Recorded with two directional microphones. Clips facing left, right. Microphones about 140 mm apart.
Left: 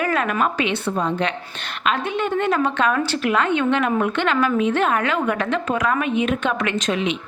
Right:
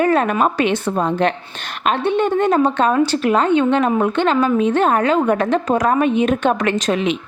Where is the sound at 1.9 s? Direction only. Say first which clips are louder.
Right 6 dB; 30° right (ahead or behind).